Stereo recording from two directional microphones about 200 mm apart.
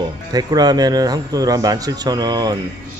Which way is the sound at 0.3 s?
20° right (ahead or behind).